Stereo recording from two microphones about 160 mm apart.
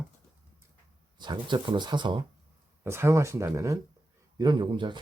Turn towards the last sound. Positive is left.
turn(degrees=-30)  # may be behind; listen again after turning